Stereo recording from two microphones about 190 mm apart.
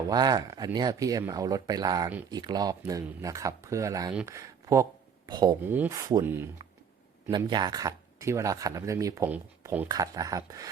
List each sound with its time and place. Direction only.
0.1 s speech: 20° right (ahead or behind)
4.3 s a sound: 15° right (ahead or behind)
5.6 s speech: 10° right (ahead or behind)
7.3 s speech: 20° right (ahead or behind)